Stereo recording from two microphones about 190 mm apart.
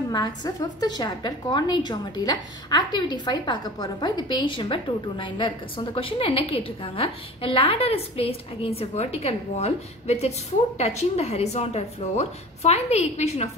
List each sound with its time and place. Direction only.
0.1 s a woman's voice: 20° left (ahead or behind)